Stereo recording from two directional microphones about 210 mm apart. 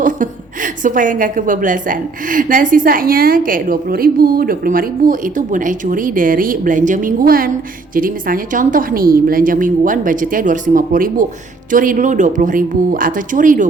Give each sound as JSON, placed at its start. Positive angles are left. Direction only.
{"t": 0.0, "sound": "a woman's voice", "side_deg": -40}